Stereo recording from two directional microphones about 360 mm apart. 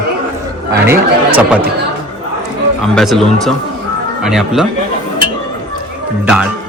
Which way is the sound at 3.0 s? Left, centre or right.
Centre.